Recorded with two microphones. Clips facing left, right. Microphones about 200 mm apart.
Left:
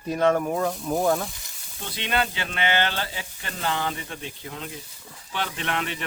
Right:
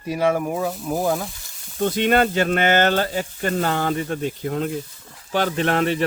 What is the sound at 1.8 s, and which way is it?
Speech, 45° right (ahead or behind).